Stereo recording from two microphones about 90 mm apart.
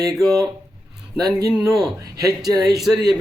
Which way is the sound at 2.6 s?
5° right (ahead or behind).